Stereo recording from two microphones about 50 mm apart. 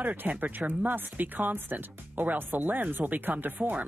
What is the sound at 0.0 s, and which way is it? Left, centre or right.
Speech, right.